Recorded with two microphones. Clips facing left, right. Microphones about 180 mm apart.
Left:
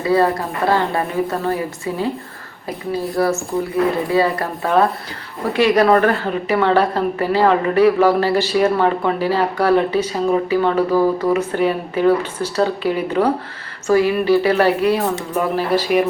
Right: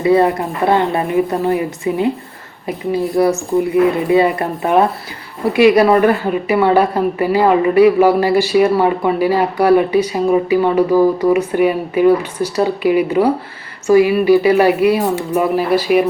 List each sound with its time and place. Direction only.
0.0 s a woman's voice: 20° right (ahead or behind)
3.2 s a woman's voice: 20° right (ahead or behind)